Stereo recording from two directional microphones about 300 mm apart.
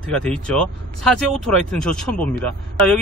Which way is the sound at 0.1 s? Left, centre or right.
Centre.